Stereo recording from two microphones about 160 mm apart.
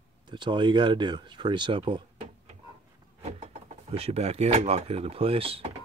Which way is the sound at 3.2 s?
40° right (ahead or behind).